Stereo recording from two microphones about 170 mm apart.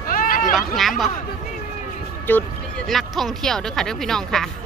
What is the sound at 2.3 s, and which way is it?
A woman's voice, 10° left (ahead or behind).